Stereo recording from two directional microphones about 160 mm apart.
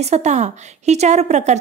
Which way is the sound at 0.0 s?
45° right (ahead or behind).